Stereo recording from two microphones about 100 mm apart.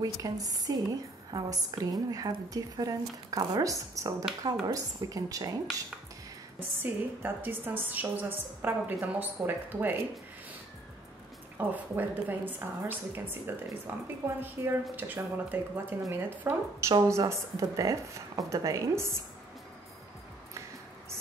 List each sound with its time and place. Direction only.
0.2 s a woman's voice: 40° right (ahead or behind)
6.6 s a woman's voice: 20° right (ahead or behind)
11.5 s a woman's voice: 15° right (ahead or behind)
17.1 s a woman's voice: 30° right (ahead or behind)